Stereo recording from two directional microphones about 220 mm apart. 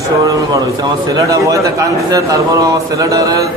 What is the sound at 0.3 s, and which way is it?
Speech, 15° right (ahead or behind).